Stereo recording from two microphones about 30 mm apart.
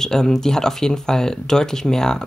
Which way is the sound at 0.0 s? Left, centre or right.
Centre.